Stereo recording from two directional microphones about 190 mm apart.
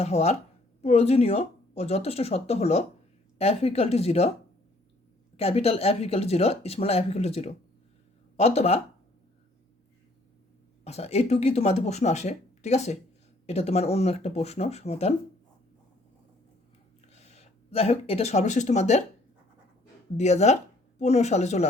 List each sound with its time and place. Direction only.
0.0 s speech: 35° left (ahead or behind)
5.4 s speech: 35° left (ahead or behind)
10.8 s speech: 35° left (ahead or behind)
17.1 s speech: 35° left (ahead or behind)
20.1 s speech: 35° left (ahead or behind)